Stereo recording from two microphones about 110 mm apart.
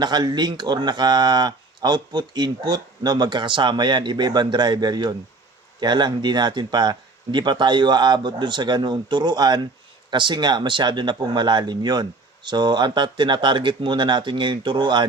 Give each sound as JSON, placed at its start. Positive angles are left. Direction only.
{"t": 0.0, "sound": "speech", "side_deg": -40}